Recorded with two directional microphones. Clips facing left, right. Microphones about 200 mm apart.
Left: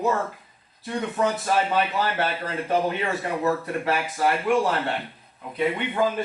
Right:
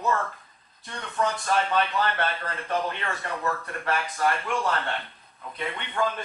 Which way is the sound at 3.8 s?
10° left (ahead or behind).